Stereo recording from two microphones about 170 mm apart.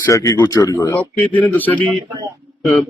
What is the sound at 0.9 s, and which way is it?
A man's voice, 10° left (ahead or behind).